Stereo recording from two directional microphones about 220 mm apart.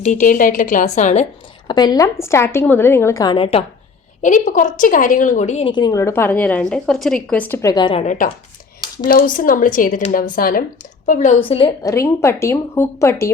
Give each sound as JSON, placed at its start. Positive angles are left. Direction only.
{"t": 0.0, "sound": "a woman's voice", "side_deg": 35}
{"t": 1.6, "sound": "a woman's voice", "side_deg": 20}
{"t": 4.2, "sound": "a woman's voice", "side_deg": 35}
{"t": 8.0, "sound": "a woman's voice", "side_deg": 35}